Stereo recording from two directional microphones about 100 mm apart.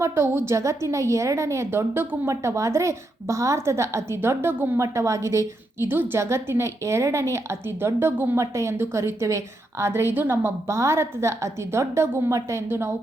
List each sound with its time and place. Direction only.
0.0 s a woman's voice: 25° right (ahead or behind)